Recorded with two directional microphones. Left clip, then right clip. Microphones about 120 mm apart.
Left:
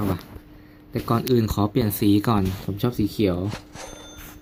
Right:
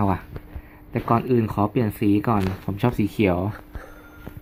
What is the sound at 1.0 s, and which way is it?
Speech, 5° right (ahead or behind).